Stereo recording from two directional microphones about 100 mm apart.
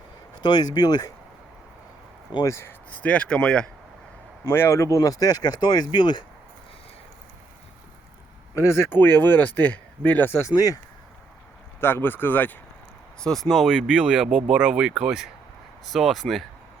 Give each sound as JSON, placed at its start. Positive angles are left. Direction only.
{"t": 0.4, "sound": "speech", "side_deg": 45}
{"t": 2.5, "sound": "speech", "side_deg": 25}
{"t": 2.9, "sound": "speech", "side_deg": 15}
{"t": 4.4, "sound": "speech", "side_deg": 25}
{"t": 8.5, "sound": "speech", "side_deg": 30}
{"t": 11.8, "sound": "speech", "side_deg": 25}
{"t": 13.1, "sound": "speech", "side_deg": 5}